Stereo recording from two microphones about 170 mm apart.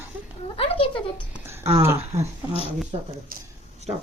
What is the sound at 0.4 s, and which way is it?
Speech, 35° left (ahead or behind).